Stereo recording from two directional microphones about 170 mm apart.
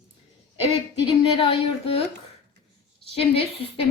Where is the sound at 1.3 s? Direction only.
30° left (ahead or behind).